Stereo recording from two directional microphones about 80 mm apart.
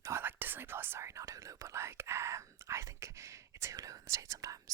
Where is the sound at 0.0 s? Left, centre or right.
Right.